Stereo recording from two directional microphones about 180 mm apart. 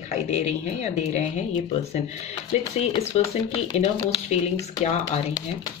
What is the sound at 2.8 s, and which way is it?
Speech, 35° left (ahead or behind).